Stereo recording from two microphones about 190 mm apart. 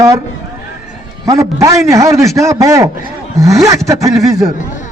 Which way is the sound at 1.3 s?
15° right (ahead or behind).